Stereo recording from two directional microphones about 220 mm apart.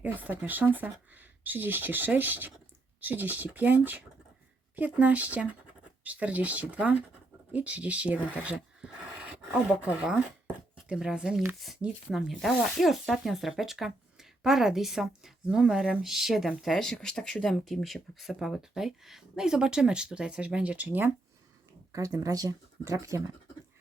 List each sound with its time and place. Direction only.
0.0 s speech: 5° right (ahead or behind)